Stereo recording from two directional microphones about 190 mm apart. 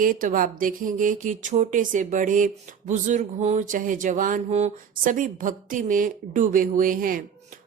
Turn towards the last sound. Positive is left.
turn(degrees=-45)  # may be behind; listen again after turning